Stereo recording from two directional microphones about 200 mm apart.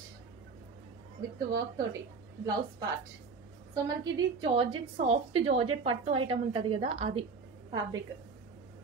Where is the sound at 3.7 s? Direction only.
20° right (ahead or behind).